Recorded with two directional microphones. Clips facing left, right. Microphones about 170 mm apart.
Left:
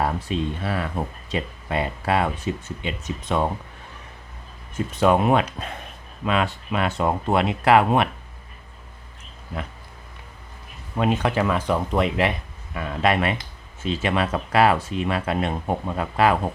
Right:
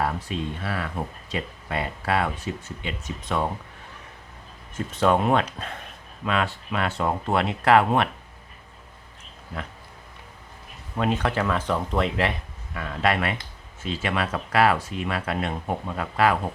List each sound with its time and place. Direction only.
0.0 s speech: 25° left (ahead or behind)
4.9 s speech: 10° left (ahead or behind)
10.9 s speech: 15° left (ahead or behind)